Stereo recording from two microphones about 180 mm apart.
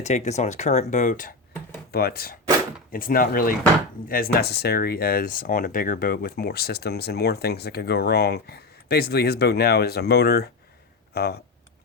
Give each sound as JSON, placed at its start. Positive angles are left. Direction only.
{"t": 0.0, "sound": "speech", "side_deg": 40}
{"t": 1.9, "sound": "speech", "side_deg": 60}